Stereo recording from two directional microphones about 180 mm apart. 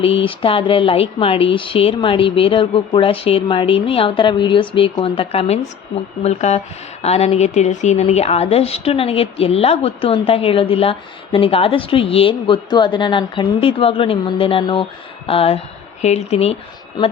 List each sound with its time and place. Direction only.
0.0 s a woman's voice: 30° left (ahead or behind)
17.0 s a woman's voice: 25° left (ahead or behind)